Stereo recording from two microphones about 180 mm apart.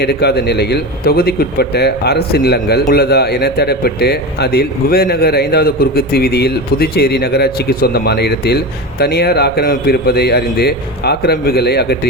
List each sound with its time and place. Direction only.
0.0 s speech: 65° left (ahead or behind)